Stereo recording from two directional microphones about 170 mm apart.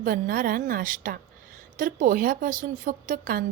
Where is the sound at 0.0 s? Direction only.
60° right (ahead or behind).